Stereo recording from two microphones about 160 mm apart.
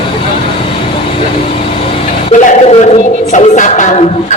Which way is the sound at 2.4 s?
45° left (ahead or behind).